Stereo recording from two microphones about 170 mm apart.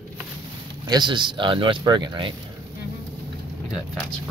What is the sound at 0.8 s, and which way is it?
Speech, 25° right (ahead or behind).